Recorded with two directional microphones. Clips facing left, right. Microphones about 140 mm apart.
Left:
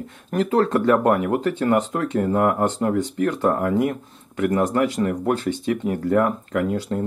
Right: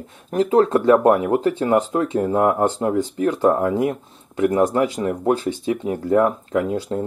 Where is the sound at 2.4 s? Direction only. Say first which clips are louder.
Right 3 dB; 25° right (ahead or behind).